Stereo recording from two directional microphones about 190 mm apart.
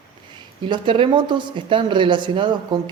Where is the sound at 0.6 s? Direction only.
25° right (ahead or behind).